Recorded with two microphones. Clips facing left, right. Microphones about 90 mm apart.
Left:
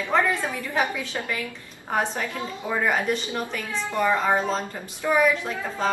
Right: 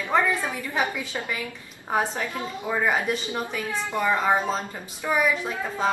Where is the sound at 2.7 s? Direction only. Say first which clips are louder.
Even; 10° right (ahead or behind).